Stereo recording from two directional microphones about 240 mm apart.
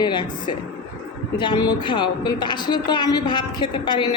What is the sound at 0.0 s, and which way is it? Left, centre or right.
A woman's voice, centre.